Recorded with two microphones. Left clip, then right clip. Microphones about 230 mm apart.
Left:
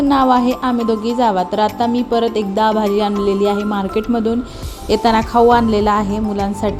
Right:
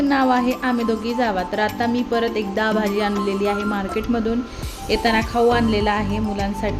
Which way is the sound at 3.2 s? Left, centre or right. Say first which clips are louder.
Left 5 dB; centre.